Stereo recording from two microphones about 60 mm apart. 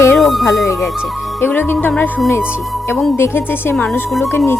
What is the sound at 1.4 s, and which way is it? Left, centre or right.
Speech, left.